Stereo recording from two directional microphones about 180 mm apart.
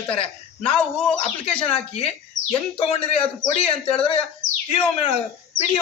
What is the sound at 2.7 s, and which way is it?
Speech, 30° left (ahead or behind).